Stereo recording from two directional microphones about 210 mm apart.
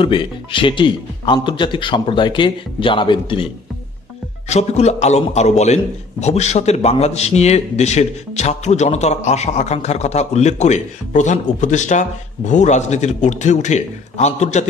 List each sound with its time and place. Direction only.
0.0 s speech: 25° left (ahead or behind)
4.5 s speech: 30° left (ahead or behind)